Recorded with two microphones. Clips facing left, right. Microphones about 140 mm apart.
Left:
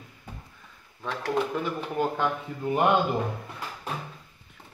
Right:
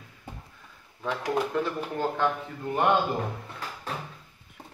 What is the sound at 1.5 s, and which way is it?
Speech, 15° left (ahead or behind).